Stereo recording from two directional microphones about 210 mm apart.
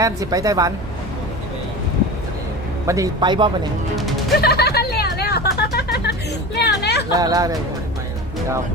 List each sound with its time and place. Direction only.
0.0 s a woman's voice: 15° right (ahead or behind)
2.8 s speech: 15° right (ahead or behind)
4.4 s a sound: 50° left (ahead or behind)
7.1 s a woman's voice: 15° right (ahead or behind)